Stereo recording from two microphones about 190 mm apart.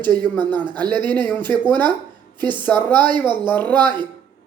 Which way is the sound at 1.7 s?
25° right (ahead or behind).